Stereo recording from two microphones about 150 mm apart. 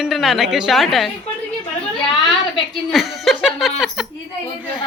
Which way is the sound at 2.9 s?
Centre (ahead or behind).